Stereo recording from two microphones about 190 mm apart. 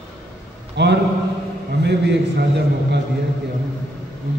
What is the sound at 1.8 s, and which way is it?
A man's voice, 65° right (ahead or behind).